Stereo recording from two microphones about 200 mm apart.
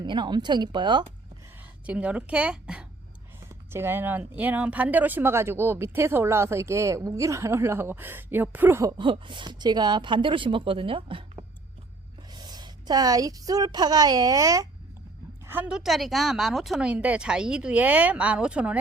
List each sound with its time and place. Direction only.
0.0 s speech: 20° right (ahead or behind)
1.9 s a woman's voice: 5° right (ahead or behind)